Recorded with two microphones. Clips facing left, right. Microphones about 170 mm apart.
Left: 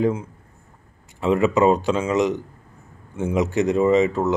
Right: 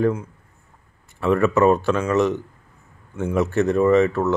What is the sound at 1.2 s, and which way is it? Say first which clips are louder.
Speech: even; 15° left (ahead or behind).